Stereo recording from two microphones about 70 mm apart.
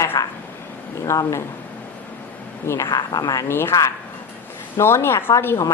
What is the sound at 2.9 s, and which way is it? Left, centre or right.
Speech, left.